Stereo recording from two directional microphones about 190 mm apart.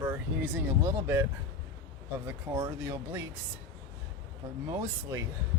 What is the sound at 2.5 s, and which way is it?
Speech, 15° right (ahead or behind).